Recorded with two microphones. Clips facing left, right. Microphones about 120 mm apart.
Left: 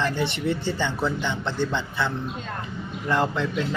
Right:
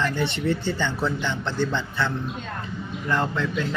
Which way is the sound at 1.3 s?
15° left (ahead or behind).